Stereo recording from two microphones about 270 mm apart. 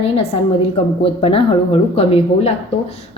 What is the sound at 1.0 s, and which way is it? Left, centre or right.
A woman's voice, centre.